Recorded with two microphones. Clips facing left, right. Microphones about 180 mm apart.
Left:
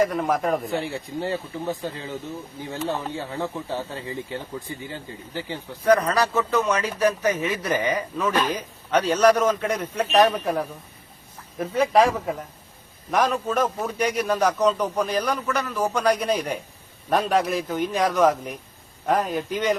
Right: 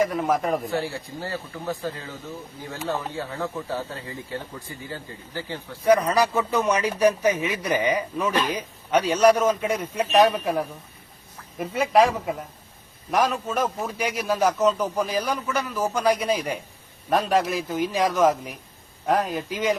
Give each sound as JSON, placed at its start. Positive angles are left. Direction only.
{"t": 0.0, "sound": "a man's voice", "side_deg": 0}
{"t": 0.7, "sound": "speech", "side_deg": 20}
{"t": 5.8, "sound": "a man's voice", "side_deg": -10}